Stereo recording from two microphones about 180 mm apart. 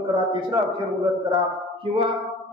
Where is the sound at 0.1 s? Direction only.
25° right (ahead or behind).